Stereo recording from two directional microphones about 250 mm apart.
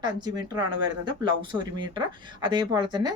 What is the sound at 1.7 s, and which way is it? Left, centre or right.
Speech, centre.